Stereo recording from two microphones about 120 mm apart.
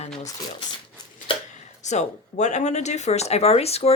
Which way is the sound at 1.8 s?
75° left (ahead or behind).